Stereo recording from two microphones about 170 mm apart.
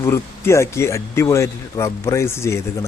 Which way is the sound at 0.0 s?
15° left (ahead or behind).